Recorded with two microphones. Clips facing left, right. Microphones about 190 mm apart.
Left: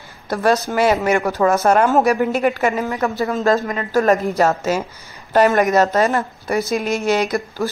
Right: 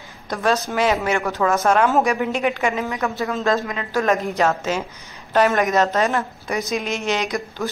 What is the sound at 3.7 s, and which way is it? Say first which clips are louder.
Speech: left 4 dB; 40° left (ahead or behind).